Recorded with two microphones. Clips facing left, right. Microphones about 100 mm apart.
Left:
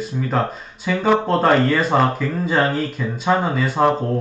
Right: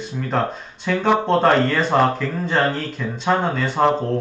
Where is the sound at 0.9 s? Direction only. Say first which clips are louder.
Even; centre (ahead or behind).